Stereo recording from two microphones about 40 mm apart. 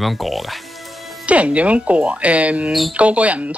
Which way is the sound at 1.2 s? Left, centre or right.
Right.